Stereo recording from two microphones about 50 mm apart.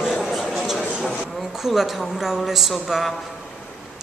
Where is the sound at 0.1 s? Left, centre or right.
Centre.